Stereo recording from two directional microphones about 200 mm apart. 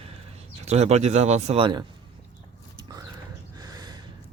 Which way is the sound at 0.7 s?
35° right (ahead or behind).